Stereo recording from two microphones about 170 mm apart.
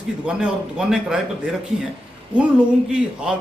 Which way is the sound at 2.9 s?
5° right (ahead or behind).